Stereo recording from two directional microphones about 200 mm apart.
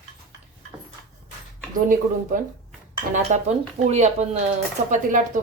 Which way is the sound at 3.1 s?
35° right (ahead or behind).